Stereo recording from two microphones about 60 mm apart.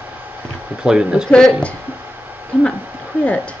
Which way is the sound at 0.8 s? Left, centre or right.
Centre.